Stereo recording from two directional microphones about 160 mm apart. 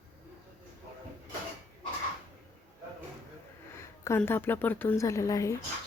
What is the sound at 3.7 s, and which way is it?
A woman's voice, 15° left (ahead or behind).